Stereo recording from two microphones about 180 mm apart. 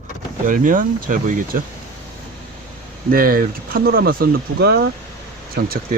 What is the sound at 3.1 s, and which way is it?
Speech, 55° right (ahead or behind).